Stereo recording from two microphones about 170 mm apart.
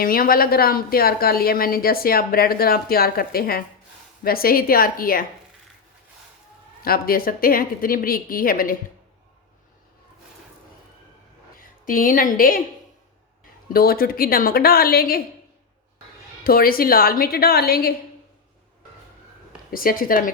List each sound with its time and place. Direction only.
0.0 s a woman's voice: 55° left (ahead or behind)
6.8 s a woman's voice: 60° left (ahead or behind)
11.5 s a woman's voice: 55° left (ahead or behind)
13.7 s a woman's voice: 60° left (ahead or behind)
16.4 s a woman's voice: 60° left (ahead or behind)
19.7 s a woman's voice: 55° left (ahead or behind)